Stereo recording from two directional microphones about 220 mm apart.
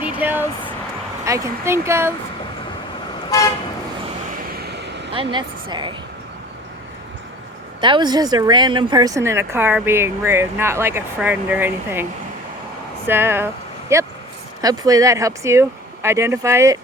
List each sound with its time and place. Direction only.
0.0 s a sound: 10° right (ahead or behind)
1.2 s speech: 15° right (ahead or behind)
3.2 s toot: 15° left (ahead or behind)
4.4 s vehicle: 50° right (ahead or behind)
5.1 s speech: 20° right (ahead or behind)
7.8 s speech: 20° right (ahead or behind)
13.1 s speech: 10° right (ahead or behind)